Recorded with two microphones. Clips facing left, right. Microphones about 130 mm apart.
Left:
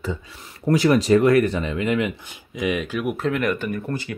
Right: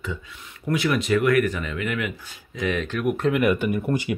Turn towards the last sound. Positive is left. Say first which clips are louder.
# right 3 dB
turn(degrees=-15)  # may be behind; listen again after turning